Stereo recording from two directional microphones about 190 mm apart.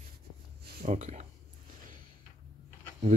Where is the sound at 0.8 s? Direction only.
40° right (ahead or behind).